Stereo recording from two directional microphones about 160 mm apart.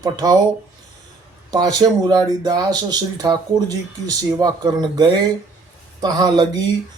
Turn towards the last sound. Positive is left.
turn(degrees=-25)  # may be behind; listen again after turning